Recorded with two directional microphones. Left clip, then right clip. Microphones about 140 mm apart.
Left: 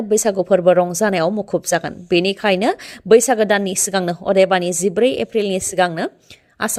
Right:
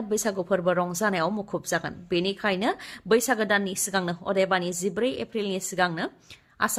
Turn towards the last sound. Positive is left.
turn(degrees=45)  # may be behind; listen again after turning